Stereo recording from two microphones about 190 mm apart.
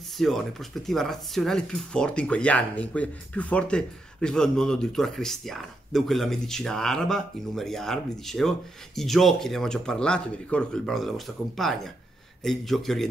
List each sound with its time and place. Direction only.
0.2 s speech: centre (ahead or behind)